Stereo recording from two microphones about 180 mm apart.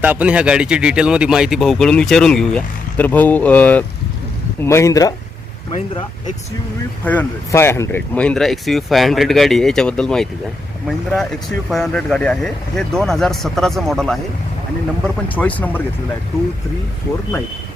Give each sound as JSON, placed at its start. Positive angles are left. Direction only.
{"t": 0.0, "sound": "speech", "side_deg": -10}
{"t": 5.7, "sound": "speech", "side_deg": 35}
{"t": 7.0, "sound": "speech", "side_deg": 10}